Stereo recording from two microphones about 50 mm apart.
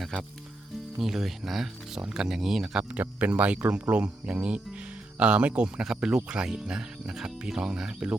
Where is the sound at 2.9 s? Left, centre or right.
Right.